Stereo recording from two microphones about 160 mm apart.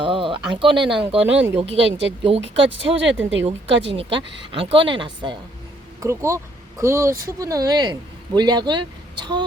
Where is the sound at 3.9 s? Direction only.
30° right (ahead or behind).